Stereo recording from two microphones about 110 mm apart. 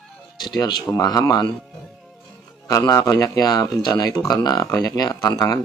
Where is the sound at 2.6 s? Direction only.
35° left (ahead or behind).